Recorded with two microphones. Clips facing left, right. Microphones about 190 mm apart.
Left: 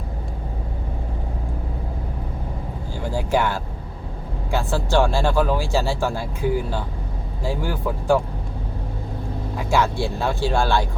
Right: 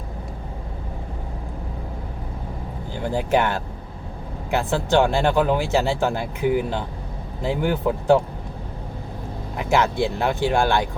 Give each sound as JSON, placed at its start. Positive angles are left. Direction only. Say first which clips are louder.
{"t": 2.9, "sound": "speech", "louder": "right 2 dB", "side_deg": -20}
{"t": 9.6, "sound": "speech", "louder": "right 1 dB", "side_deg": -20}